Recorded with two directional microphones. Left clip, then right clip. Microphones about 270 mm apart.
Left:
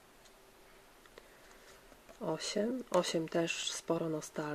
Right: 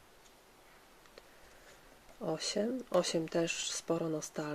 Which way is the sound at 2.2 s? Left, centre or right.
Centre.